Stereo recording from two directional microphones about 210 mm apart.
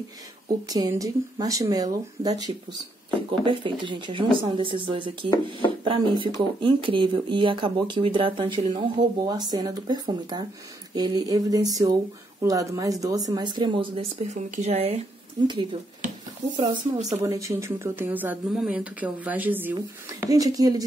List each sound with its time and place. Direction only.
0.7 s speech: 15° right (ahead or behind)